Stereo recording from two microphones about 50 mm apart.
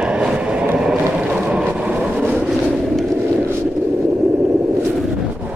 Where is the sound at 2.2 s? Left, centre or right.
Right.